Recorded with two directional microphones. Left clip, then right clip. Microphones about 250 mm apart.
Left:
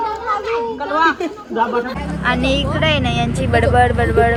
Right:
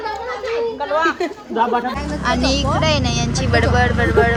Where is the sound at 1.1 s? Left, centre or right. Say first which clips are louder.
Even; right.